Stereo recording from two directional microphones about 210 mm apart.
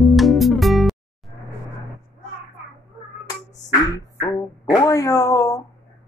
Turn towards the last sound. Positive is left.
turn(degrees=15)  # may be behind; listen again after turning